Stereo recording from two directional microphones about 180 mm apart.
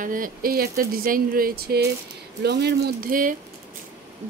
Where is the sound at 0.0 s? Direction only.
50° right (ahead or behind).